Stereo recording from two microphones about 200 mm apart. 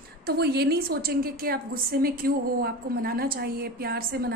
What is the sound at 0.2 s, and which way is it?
A woman's voice, 50° right (ahead or behind).